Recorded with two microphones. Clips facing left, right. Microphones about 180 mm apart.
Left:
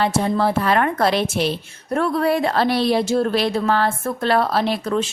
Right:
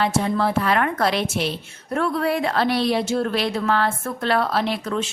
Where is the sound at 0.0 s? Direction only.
35° left (ahead or behind).